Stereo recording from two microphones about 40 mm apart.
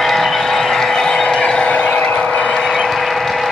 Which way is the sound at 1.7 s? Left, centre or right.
Left.